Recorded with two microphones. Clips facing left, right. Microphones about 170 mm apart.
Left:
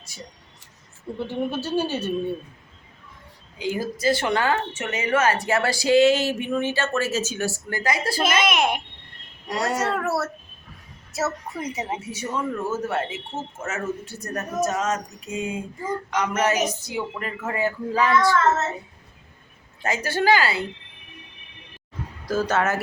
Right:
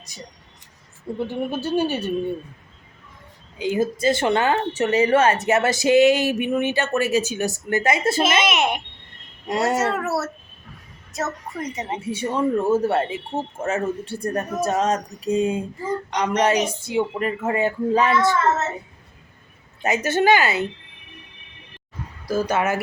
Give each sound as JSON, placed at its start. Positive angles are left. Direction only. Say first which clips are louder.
{"t": 1.3, "sound": "a woman's voice", "louder": "even", "side_deg": -15}
{"t": 3.6, "sound": "speech", "louder": "right 4 dB", "side_deg": -20}
{"t": 4.7, "sound": "speech", "louder": "right 7 dB", "side_deg": -35}
{"t": 8.2, "sound": "a woman's voice", "louder": "right 1 dB", "side_deg": 0}
{"t": 9.5, "sound": "speech", "louder": "right 4 dB", "side_deg": -25}
{"t": 9.7, "sound": "a woman's voice", "louder": "right 2 dB", "side_deg": 0}
{"t": 11.9, "sound": "speech", "louder": "right 5 dB", "side_deg": -30}
{"t": 19.8, "sound": "speech", "louder": "right 4 dB", "side_deg": -20}
{"t": 22.3, "sound": "a woman's voice", "louder": "right 1 dB", "side_deg": -10}